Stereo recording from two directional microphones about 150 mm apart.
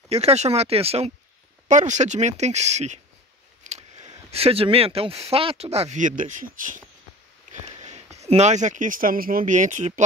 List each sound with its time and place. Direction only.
0.1 s speech: 45° right (ahead or behind)
1.7 s speech: 55° right (ahead or behind)
7.6 s speech: 50° right (ahead or behind)